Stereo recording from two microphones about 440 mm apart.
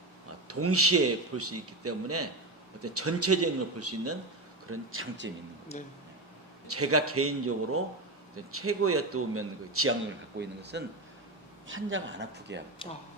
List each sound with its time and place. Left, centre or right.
0.4 s a man's voice: right
6.7 s a man's voice: right